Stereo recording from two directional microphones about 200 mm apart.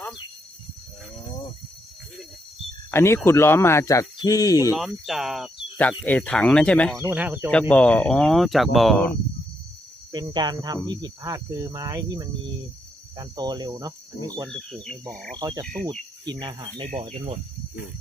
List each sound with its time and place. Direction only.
2.9 s speech: 10° left (ahead or behind)
4.7 s speech: 5° right (ahead or behind)
7.1 s speech: 10° right (ahead or behind)
7.7 s speech: 5° left (ahead or behind)
10.1 s cricket: 20° right (ahead or behind)
14.7 s speech: 5° left (ahead or behind)
15.4 s speech: 20° right (ahead or behind)
15.6 s speech: centre (ahead or behind)
16.2 s cricket: 20° right (ahead or behind)